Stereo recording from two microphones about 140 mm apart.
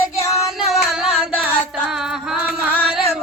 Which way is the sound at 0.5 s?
5° right (ahead or behind).